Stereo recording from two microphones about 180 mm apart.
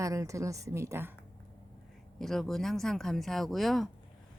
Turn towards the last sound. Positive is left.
turn(degrees=0)  # may be behind; listen again after turning